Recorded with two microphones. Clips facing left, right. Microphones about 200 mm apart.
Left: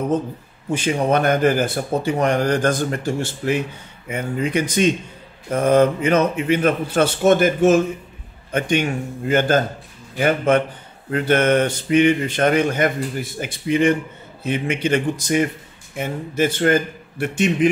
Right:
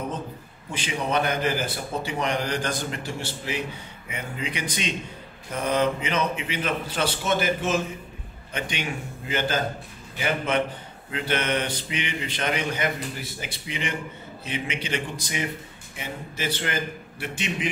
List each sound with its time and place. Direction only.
0.7 s a man's voice: 45° left (ahead or behind)